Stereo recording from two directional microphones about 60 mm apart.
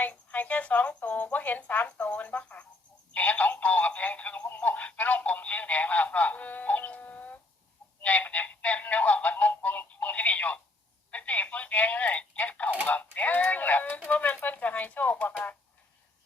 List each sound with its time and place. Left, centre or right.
0.0 s speech: left
3.2 s telephone: left
8.0 s synthetic singing: left
11.1 s telephone: left
12.8 s a sound: left
14.1 s pigeon: left